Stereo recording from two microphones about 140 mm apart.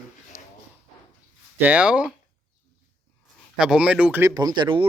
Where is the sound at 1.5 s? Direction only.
10° right (ahead or behind).